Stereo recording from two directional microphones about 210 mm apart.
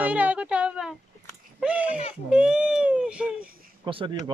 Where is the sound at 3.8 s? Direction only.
25° right (ahead or behind).